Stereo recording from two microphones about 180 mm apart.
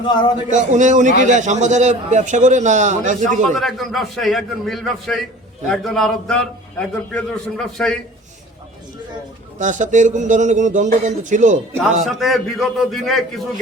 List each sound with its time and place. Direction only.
0.1 s speech: 25° left (ahead or behind)
0.5 s a man's voice: 45° right (ahead or behind)
3.5 s a man's voice: centre (ahead or behind)
9.6 s speech: 45° right (ahead or behind)
12.0 s a man's voice: centre (ahead or behind)